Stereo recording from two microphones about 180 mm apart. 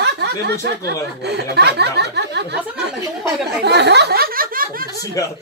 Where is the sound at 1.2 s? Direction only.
65° right (ahead or behind).